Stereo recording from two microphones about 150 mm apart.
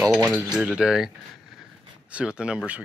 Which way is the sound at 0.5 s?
5° right (ahead or behind).